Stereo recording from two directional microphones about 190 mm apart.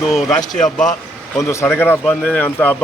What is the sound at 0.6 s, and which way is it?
Speech, 5° left (ahead or behind).